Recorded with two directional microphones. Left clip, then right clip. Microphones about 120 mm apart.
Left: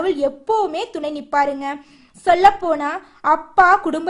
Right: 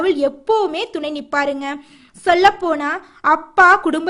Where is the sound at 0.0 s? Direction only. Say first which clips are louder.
Right 2 dB; 25° right (ahead or behind).